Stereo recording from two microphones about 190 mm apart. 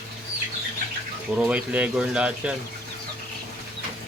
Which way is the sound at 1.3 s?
5° right (ahead or behind).